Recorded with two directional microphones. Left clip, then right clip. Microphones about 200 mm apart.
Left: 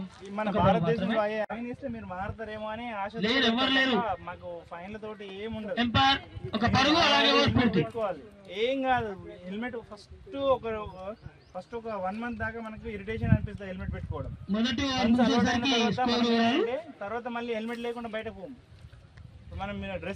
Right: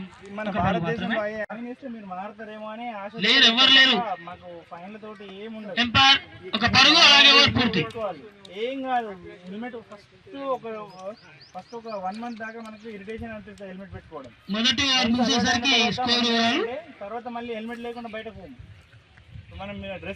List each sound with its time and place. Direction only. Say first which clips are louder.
0.6 s a man's voice: left 1 dB; 25° left (ahead or behind)
2.6 s speech: right 1 dB; 5° right (ahead or behind)
3.2 s a man's voice: right 10 dB; 25° left (ahead or behind)
5.0 s speech: even; 10° right (ahead or behind)
5.7 s a man's voice: right 7 dB; 25° left (ahead or behind)
8.5 s speech: even; 5° right (ahead or behind)
10.3 s speech: left 2 dB; 10° right (ahead or behind)
14.4 s a man's voice: right 8 dB; 25° left (ahead or behind)
16.6 s speech: even; 5° right (ahead or behind)
19.5 s speech: right 1 dB; 5° right (ahead or behind)